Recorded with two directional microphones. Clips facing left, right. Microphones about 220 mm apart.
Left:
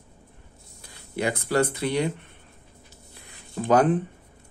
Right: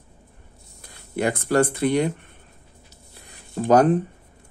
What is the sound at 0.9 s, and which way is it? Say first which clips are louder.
Speech: right 3 dB; 50° right (ahead or behind).